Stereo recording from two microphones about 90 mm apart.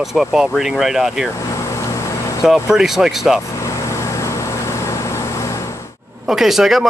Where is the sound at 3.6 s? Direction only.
35° left (ahead or behind).